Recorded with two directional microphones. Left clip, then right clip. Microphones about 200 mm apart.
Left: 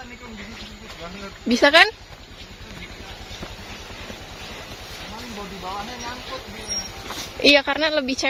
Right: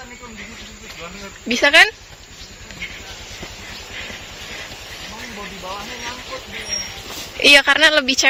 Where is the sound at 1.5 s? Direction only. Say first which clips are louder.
Right 2 dB; 20° left (ahead or behind).